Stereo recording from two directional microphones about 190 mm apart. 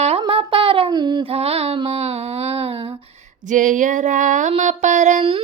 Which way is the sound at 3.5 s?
40° right (ahead or behind).